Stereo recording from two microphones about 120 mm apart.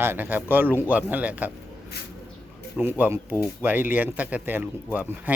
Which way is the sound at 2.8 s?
15° right (ahead or behind).